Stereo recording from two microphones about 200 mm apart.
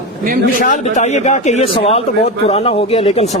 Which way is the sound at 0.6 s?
40° left (ahead or behind).